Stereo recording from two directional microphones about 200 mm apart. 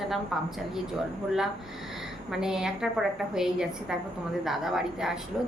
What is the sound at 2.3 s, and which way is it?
A woman's voice, centre (ahead or behind).